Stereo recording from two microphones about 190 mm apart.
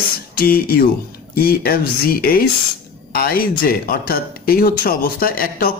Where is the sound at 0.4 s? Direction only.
50° left (ahead or behind).